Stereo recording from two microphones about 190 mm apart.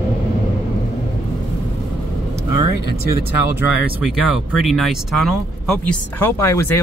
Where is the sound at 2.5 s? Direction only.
55° left (ahead or behind).